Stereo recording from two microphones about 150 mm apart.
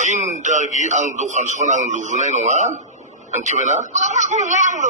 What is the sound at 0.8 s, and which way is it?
A man's voice, 50° right (ahead or behind).